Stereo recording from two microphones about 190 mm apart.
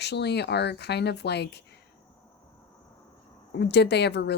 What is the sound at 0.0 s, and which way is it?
Speech, 60° left (ahead or behind).